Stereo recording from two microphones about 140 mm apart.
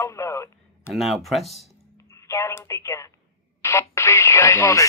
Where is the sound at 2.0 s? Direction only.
20° left (ahead or behind).